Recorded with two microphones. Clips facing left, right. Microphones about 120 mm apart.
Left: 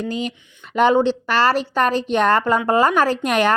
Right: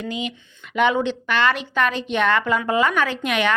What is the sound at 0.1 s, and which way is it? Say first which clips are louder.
A woman's voice: left 3 dB; 35° left (ahead or behind).